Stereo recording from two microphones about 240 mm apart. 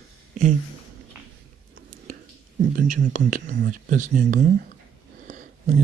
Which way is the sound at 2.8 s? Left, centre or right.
Right.